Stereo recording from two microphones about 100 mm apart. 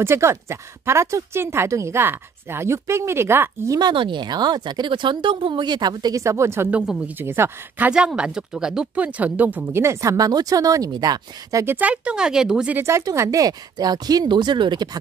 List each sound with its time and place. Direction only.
0.0 s speech: 25° right (ahead or behind)
3.9 s speech: 55° right (ahead or behind)
6.2 s speech: 30° right (ahead or behind)
6.7 s speech: 15° right (ahead or behind)
7.9 s speech: 10° right (ahead or behind); by 11.6 s 40° right (ahead or behind)
11.6 s speech: 15° right (ahead or behind)
12.7 s speech: 30° right (ahead or behind); by 14.9 s 50° right (ahead or behind)